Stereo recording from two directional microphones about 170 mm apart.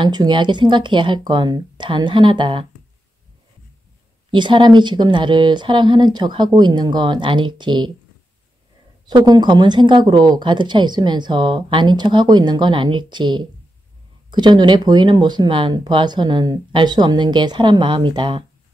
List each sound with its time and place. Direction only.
0.0 s speech: 25° right (ahead or behind)
4.3 s speech: 30° right (ahead or behind)
9.0 s speech: 25° right (ahead or behind)